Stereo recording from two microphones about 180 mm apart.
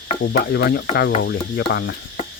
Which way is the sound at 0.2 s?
60° left (ahead or behind).